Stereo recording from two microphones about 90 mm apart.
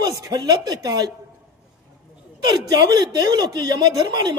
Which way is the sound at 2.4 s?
45° right (ahead or behind).